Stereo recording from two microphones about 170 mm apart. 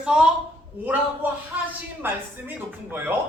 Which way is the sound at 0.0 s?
5° right (ahead or behind).